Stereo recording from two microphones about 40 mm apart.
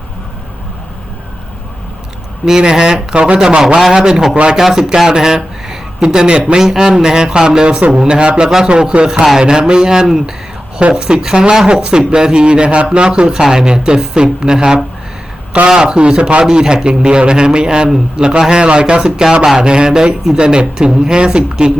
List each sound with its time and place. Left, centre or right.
2.4 s a man's voice: centre
13.3 s a man's voice: centre